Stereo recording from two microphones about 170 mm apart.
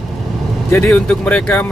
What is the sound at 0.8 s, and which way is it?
Speech, 5° left (ahead or behind).